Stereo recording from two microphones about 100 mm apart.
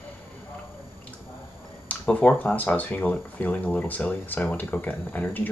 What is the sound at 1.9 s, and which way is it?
Speech, 15° left (ahead or behind).